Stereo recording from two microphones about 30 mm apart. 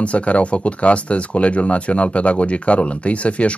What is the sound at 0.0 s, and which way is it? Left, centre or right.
Speech, left.